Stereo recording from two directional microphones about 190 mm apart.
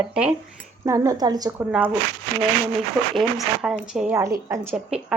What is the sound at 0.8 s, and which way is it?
Speech, 15° right (ahead or behind).